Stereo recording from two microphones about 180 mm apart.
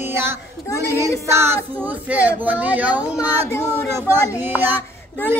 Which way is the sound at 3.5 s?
15° left (ahead or behind).